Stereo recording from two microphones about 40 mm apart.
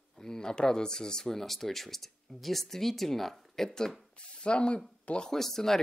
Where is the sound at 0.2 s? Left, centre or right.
Centre.